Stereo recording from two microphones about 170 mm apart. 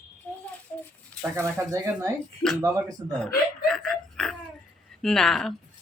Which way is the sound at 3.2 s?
5° left (ahead or behind).